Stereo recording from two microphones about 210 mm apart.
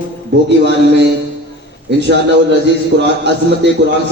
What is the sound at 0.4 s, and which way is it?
A man's voice, 55° right (ahead or behind).